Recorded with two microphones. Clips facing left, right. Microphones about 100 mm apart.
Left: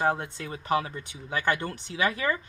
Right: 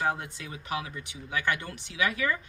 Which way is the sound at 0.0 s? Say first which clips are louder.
Left 3 dB; 40° left (ahead or behind).